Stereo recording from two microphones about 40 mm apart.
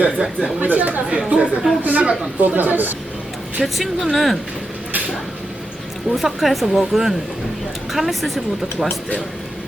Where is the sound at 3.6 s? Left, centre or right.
Centre.